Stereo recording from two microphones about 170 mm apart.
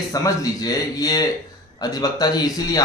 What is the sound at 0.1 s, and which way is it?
A man's voice, 20° left (ahead or behind).